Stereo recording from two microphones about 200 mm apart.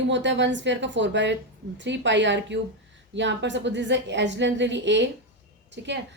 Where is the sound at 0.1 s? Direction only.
65° right (ahead or behind).